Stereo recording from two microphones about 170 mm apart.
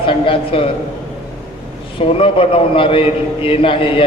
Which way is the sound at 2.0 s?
30° left (ahead or behind).